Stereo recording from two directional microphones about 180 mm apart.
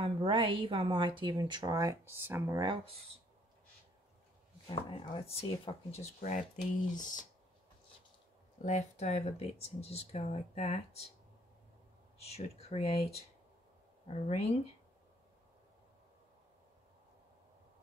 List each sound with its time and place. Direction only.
0.0 s speech: 30° right (ahead or behind)
4.6 s speech: 25° left (ahead or behind); by 7.2 s 45° left (ahead or behind)
8.5 s speech: 40° left (ahead or behind)
12.2 s speech: 35° left (ahead or behind)